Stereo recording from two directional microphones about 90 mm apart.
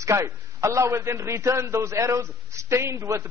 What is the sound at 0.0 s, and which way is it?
A man's voice, 35° right (ahead or behind).